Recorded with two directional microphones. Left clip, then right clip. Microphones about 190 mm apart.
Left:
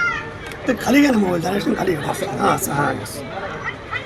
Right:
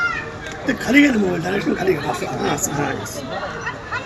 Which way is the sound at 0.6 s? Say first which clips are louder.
Right 1 dB; 35° left (ahead or behind).